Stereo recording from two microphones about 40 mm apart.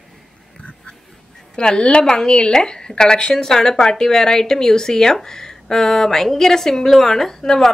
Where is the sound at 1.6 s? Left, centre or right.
Left.